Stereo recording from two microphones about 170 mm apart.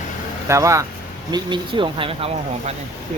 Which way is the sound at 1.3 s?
30° right (ahead or behind).